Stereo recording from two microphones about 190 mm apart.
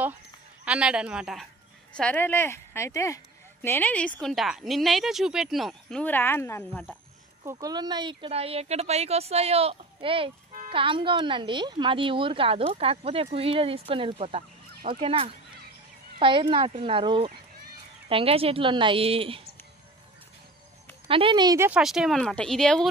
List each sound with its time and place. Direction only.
0.7 s a woman's voice: 5° right (ahead or behind)
7.4 s a woman's voice: 20° right (ahead or behind)
21.1 s a woman's voice: 25° right (ahead or behind)
21.6 s a woman's voice: 5° right (ahead or behind)